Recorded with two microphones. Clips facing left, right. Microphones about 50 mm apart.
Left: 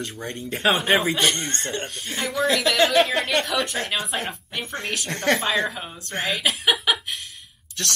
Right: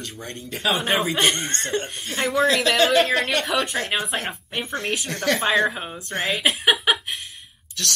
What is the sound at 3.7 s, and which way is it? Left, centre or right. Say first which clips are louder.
Speech: right 1 dB; right.